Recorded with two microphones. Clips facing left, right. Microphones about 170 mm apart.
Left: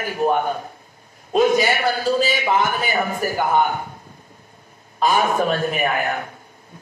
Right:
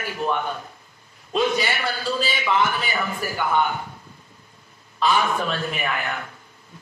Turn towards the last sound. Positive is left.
turn(degrees=45)  # may be behind; listen again after turning